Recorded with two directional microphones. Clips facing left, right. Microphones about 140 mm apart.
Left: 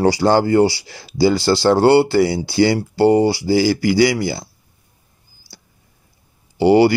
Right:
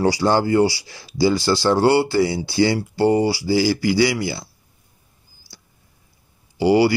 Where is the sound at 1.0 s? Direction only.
30° left (ahead or behind).